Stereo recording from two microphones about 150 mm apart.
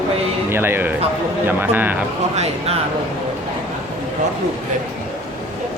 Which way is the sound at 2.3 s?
45° right (ahead or behind).